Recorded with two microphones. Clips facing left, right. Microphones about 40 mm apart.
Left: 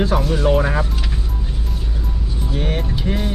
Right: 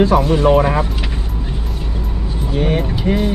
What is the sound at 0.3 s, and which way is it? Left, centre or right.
Speech, right.